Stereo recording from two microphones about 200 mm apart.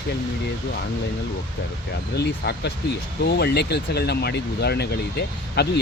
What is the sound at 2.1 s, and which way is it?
Speech, 55° left (ahead or behind).